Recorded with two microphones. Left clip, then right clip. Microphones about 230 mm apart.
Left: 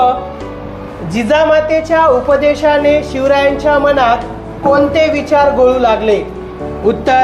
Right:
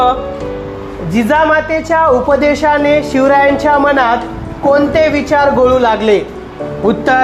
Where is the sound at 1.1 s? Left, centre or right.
Right.